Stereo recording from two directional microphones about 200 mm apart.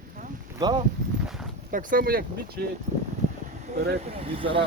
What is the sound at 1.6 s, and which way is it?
Speech, 45° right (ahead or behind).